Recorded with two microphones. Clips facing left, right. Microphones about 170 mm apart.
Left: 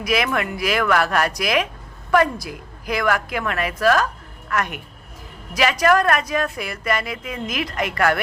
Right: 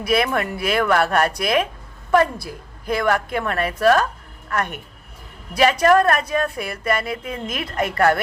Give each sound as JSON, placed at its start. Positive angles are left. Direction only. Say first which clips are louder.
{"t": 0.0, "sound": "a woman's voice", "louder": "right 2 dB", "side_deg": -30}
{"t": 5.8, "sound": "a woman's voice", "louder": "even", "side_deg": -35}